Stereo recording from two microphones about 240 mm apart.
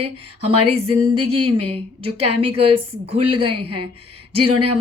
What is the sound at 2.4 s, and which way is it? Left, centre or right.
A woman's voice, right.